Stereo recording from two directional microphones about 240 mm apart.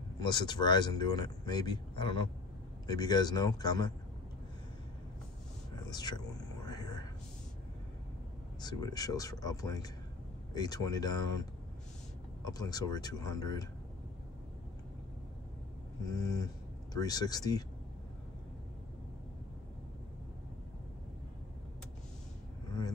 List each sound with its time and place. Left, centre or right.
0.2 s speech: centre
5.9 s a sound: centre
8.5 s speech: centre
12.5 s speech: centre
16.1 s speech: centre